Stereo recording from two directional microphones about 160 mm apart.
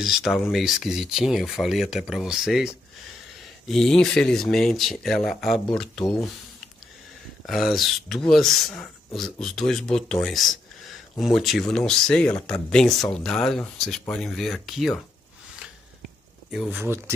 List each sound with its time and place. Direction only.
0.0 s speech: centre (ahead or behind)
7.4 s speech: centre (ahead or behind)
16.4 s speech: 10° right (ahead or behind)